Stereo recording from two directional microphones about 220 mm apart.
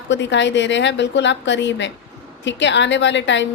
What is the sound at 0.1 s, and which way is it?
A woman's voice, 55° left (ahead or behind).